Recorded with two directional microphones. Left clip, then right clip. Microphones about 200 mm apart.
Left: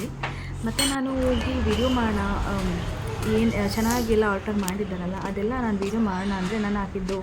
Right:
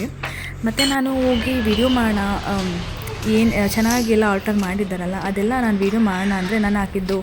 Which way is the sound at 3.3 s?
20° right (ahead or behind).